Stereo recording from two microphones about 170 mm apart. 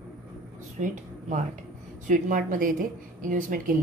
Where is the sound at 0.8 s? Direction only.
50° right (ahead or behind).